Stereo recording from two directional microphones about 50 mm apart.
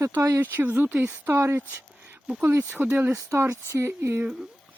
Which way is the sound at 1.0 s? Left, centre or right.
Right.